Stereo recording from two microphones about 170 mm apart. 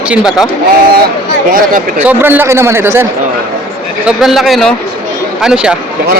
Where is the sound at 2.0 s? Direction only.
10° right (ahead or behind).